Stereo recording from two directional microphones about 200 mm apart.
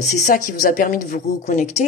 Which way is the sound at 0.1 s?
40° left (ahead or behind).